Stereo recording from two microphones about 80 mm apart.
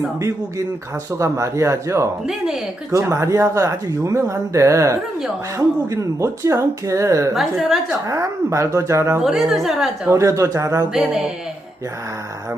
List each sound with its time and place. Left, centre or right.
1.2 s speech: right
7.3 s a woman's voice: centre
8.0 s speech: right
9.2 s a woman's voice: centre
10.1 s speech: right
10.9 s a woman's voice: centre